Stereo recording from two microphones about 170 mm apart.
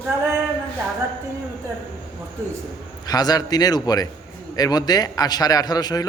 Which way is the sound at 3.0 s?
25° left (ahead or behind).